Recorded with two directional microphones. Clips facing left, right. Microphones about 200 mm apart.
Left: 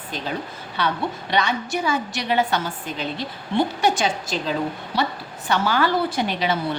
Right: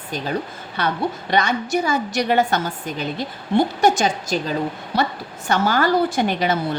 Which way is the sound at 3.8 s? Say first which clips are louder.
Right 3 dB; 45° right (ahead or behind).